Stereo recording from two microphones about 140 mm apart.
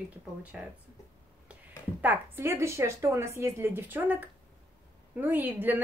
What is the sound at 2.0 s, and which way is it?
A woman's voice, 15° right (ahead or behind).